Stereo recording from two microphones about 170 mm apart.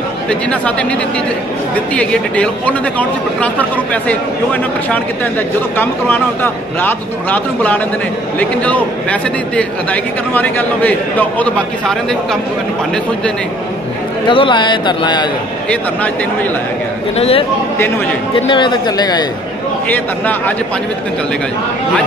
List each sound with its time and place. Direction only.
0.3 s speech: 5° left (ahead or behind)
2.0 s speech: 5° left (ahead or behind)
14.2 s speech: 30° left (ahead or behind)
17.2 s speech: 35° left (ahead or behind)
18.5 s speech: 25° left (ahead or behind)
19.9 s speech: 10° left (ahead or behind)